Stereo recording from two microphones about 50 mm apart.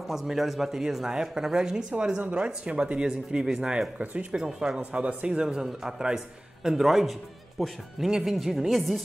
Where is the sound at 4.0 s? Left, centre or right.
Right.